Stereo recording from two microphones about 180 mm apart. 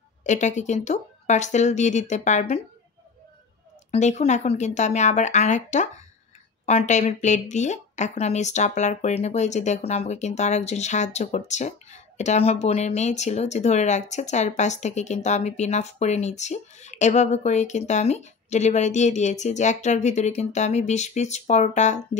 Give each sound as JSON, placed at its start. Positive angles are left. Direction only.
{"t": 0.2, "sound": "speech", "side_deg": 40}
{"t": 3.9, "sound": "speech", "side_deg": 35}